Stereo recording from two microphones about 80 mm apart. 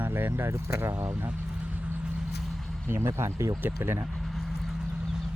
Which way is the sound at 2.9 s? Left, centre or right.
Right.